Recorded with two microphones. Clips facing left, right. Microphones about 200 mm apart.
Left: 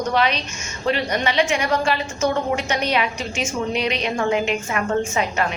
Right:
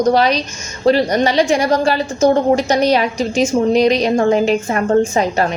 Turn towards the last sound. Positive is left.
turn(degrees=-35)  # may be behind; listen again after turning